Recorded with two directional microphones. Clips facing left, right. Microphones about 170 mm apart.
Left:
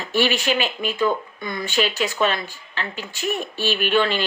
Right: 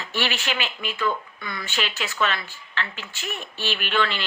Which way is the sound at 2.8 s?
40° left (ahead or behind).